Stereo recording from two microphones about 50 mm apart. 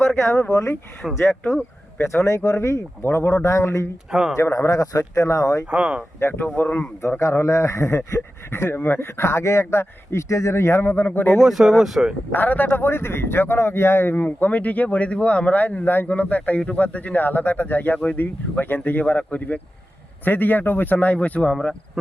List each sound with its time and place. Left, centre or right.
0.0 s a sound: centre
1.0 s speech: centre
2.0 s speech: left
3.0 s speech: left
3.4 s speech: left
5.7 s speech: right
6.1 s speech: left
6.4 s speech: left
7.2 s speech: left
11.3 s speech: centre
12.3 s speech: left
12.8 s speech: left
14.3 s speech: left
20.2 s speech: left